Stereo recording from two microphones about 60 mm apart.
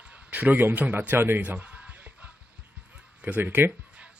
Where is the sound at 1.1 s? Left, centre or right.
Right.